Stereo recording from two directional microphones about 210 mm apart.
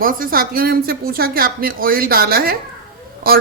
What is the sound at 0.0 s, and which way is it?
Speech, 45° right (ahead or behind).